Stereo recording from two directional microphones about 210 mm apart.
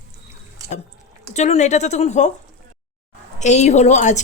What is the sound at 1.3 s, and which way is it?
Speech, 35° left (ahead or behind).